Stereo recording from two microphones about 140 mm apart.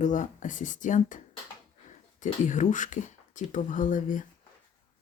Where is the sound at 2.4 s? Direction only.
60° left (ahead or behind).